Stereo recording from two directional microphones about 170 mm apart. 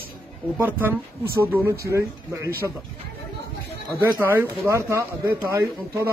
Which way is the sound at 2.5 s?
15° left (ahead or behind).